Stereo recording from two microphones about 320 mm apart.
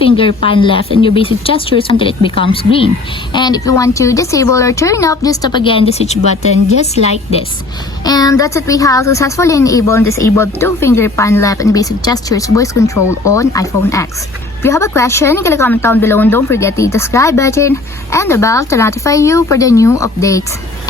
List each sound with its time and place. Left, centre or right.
0.0 s a woman's voice: centre
8.0 s a woman's voice: centre